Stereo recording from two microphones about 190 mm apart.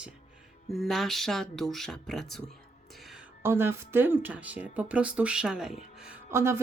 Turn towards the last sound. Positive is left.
turn(degrees=-15)  # may be behind; listen again after turning